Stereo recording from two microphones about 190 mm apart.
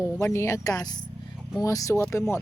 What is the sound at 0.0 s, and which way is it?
Speech, 15° left (ahead or behind).